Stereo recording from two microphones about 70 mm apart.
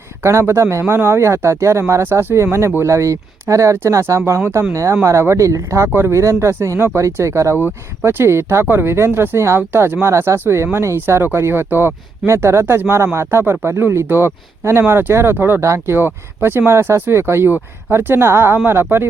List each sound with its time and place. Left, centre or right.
0.2 s speech: right
4.4 s speech: right
4.7 s speech: right
7.5 s speech: right